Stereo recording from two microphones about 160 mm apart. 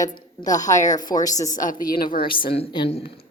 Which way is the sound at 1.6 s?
60° left (ahead or behind).